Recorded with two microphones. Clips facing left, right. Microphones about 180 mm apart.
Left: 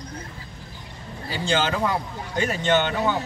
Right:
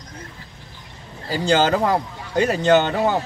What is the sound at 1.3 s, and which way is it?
Speech, 40° right (ahead or behind).